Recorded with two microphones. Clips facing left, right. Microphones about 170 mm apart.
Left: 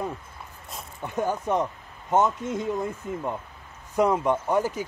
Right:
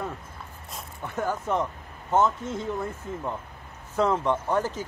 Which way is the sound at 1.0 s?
15° left (ahead or behind).